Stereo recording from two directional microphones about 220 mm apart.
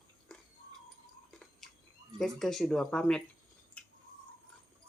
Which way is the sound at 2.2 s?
Centre (ahead or behind).